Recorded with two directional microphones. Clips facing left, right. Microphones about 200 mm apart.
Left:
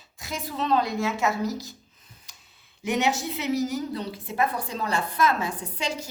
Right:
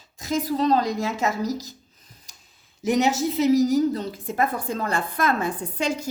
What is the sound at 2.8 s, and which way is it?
A woman's voice, 40° right (ahead or behind).